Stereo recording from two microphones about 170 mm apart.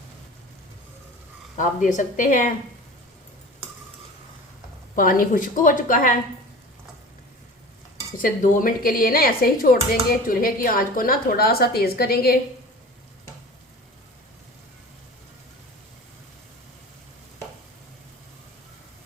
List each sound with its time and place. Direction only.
1.5 s a woman's voice: 45° left (ahead or behind)
4.9 s a woman's voice: 55° left (ahead or behind)
8.2 s speech: 55° left (ahead or behind)